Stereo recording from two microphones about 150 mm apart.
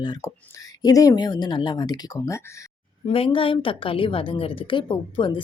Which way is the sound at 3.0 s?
40° left (ahead or behind).